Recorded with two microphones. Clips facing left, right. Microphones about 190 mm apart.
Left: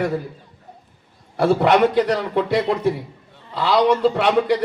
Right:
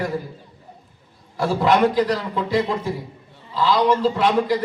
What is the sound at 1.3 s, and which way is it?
A man's voice, 65° left (ahead or behind).